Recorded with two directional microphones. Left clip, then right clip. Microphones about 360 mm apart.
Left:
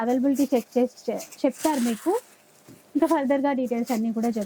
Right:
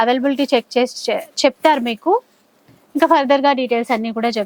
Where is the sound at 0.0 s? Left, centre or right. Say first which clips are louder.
Right 8 dB; centre.